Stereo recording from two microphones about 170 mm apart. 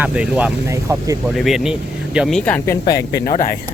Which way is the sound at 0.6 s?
15° right (ahead or behind).